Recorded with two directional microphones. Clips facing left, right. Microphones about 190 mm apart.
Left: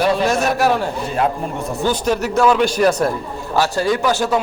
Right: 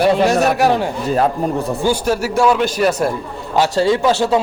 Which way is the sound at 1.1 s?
35° right (ahead or behind).